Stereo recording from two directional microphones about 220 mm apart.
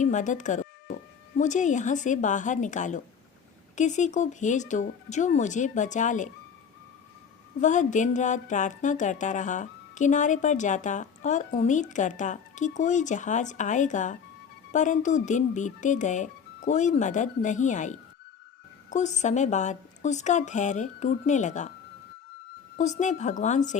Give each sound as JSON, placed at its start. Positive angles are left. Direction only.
{"t": 0.0, "sound": "speech", "side_deg": 35}
{"t": 7.6, "sound": "speech", "side_deg": 35}
{"t": 22.8, "sound": "speech", "side_deg": 35}